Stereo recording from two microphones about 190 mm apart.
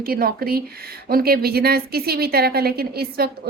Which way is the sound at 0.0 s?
50° right (ahead or behind).